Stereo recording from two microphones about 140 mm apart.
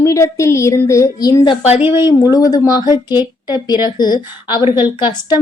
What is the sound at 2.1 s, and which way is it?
A woman's voice, 25° left (ahead or behind).